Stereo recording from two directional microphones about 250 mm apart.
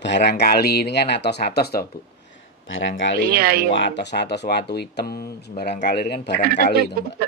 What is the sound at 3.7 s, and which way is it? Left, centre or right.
A man's voice, left.